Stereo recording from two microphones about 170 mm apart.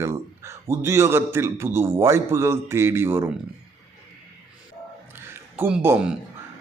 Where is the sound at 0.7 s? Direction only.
15° right (ahead or behind).